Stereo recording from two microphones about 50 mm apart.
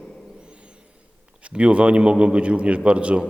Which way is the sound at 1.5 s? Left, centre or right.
Right.